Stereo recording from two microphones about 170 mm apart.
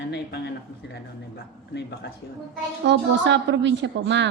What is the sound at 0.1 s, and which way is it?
Speech, 85° left.